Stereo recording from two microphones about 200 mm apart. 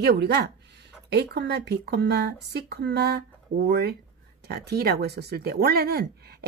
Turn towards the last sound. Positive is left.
turn(degrees=-50)  # may be behind; listen again after turning